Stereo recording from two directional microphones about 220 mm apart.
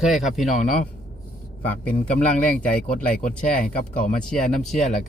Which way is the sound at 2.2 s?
35° left (ahead or behind).